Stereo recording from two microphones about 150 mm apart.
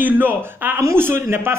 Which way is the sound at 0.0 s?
10° right (ahead or behind).